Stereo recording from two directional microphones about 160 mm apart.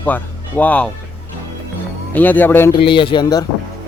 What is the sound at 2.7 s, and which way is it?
Speech, 35° left (ahead or behind).